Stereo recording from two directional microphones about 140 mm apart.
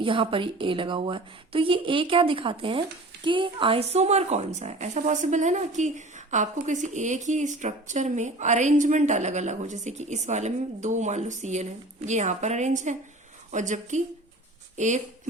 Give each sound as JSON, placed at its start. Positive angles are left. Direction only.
{"t": 0.0, "sound": "a woman's voice", "side_deg": -40}